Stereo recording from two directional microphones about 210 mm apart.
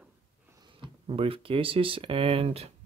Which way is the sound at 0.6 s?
25° right (ahead or behind).